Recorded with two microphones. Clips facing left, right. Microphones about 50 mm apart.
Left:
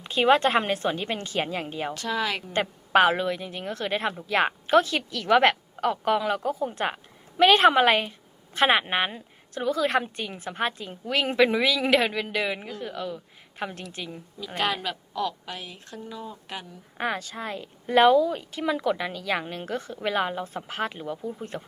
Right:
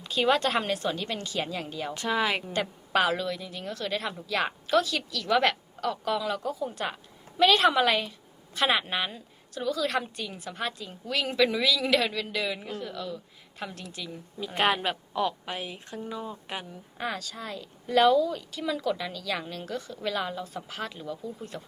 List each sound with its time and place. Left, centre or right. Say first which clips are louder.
0.0 s a woman's voice: left 4 dB; left
1.9 s a woman's voice: right 3 dB; centre
2.5 s a woman's voice: left 5 dB; left
14.3 s a woman's voice: right 2 dB; right
17.0 s a woman's voice: left 4 dB; left